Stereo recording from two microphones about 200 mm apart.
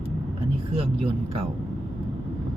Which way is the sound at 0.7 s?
30° right (ahead or behind).